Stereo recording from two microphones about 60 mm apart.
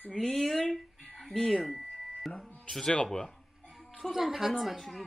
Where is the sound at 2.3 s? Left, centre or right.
Left.